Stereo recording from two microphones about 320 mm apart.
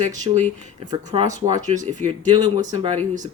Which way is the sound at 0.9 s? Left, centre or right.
Centre.